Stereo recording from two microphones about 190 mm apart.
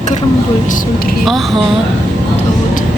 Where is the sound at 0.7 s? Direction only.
45° left (ahead or behind).